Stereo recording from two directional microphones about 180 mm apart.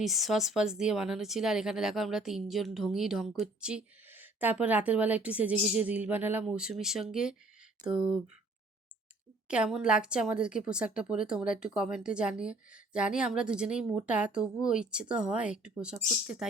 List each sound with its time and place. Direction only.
0.0 s speech: centre (ahead or behind)
7.8 s speech: 45° right (ahead or behind)
9.5 s speech: 5° right (ahead or behind)